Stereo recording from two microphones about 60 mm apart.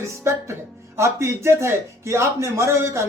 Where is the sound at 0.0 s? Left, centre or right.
Right.